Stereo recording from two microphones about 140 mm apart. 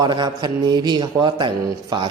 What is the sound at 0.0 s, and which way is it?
A man's voice, 35° right (ahead or behind).